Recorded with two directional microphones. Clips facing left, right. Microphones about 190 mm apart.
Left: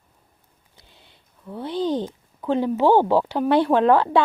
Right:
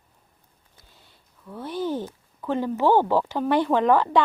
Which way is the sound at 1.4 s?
15° left (ahead or behind).